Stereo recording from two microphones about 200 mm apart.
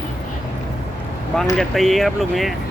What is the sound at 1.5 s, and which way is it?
Speech, centre (ahead or behind).